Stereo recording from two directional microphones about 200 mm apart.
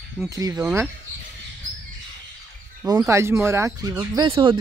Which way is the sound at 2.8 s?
10° right (ahead or behind).